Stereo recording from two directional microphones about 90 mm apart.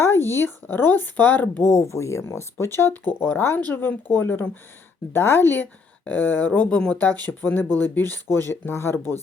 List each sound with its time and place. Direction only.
0.0 s speech: 25° left (ahead or behind)
1.6 s speech: 35° left (ahead or behind)